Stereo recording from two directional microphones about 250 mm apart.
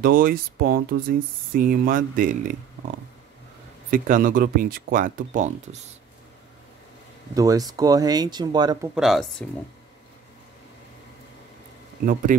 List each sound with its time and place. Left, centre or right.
0.0 s speech: right
3.9 s speech: right
7.3 s speech: centre
8.9 s speech: centre
12.3 s speech: right